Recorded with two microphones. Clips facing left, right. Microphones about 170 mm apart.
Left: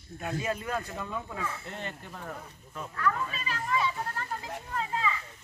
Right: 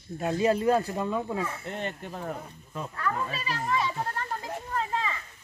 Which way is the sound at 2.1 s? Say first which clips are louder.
Right 6 dB; 30° right (ahead or behind).